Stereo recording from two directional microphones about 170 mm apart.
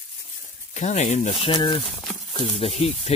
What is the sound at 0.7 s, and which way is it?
Speech, 40° left (ahead or behind).